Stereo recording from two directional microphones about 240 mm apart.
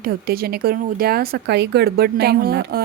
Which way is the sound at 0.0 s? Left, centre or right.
Right.